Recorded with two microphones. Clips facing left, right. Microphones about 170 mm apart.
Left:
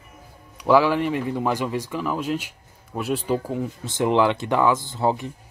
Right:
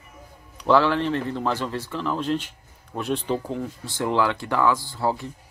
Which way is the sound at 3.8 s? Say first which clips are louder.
Left 4 dB; 20° left (ahead or behind).